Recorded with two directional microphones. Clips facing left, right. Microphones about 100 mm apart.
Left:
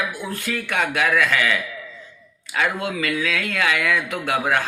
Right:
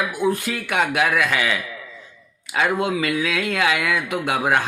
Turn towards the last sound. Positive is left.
turn(degrees=-15)  # may be behind; listen again after turning